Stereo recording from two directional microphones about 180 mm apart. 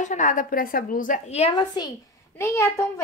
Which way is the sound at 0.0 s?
45° left (ahead or behind).